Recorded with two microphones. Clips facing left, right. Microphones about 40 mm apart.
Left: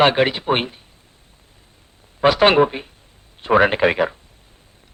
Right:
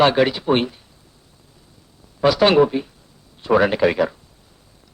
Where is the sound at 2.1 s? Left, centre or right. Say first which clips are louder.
Left 1 dB; left.